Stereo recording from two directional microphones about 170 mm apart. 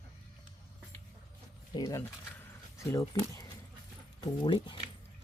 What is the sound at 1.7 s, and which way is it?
Speech, 25° left (ahead or behind).